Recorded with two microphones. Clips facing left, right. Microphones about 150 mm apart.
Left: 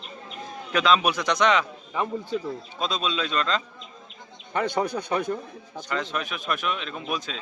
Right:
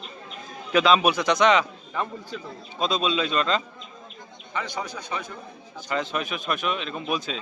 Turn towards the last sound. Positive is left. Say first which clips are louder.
# right 3 dB
turn(degrees=0)  # may be behind; listen again after turning